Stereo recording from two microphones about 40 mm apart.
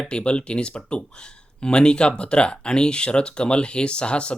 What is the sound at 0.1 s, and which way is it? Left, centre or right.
Speech, left.